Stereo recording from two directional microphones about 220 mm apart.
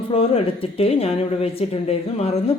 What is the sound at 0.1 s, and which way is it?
A woman's voice, 25° left (ahead or behind).